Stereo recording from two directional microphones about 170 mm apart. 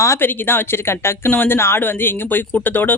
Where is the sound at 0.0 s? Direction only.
15° left (ahead or behind).